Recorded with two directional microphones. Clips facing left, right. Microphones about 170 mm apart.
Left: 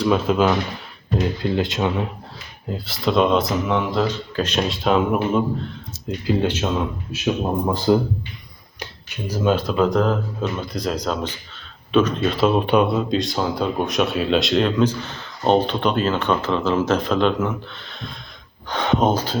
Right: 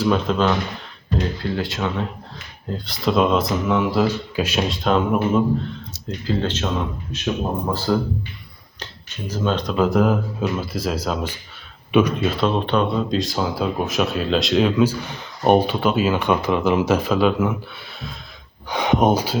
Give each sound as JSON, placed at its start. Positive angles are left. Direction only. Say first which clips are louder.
{"t": 0.0, "sound": "speech", "louder": "left 1 dB", "side_deg": 5}
{"t": 1.4, "sound": "speech", "louder": "left 3 dB", "side_deg": 20}
{"t": 2.6, "sound": "speech", "louder": "even", "side_deg": 5}
{"t": 6.1, "sound": "speech", "louder": "left 3 dB", "side_deg": 10}